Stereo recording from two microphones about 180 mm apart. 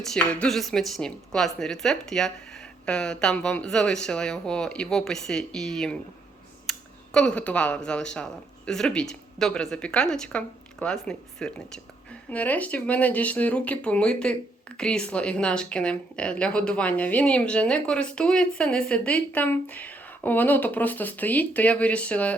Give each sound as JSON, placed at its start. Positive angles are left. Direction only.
{"t": 0.0, "sound": "speech", "side_deg": 5}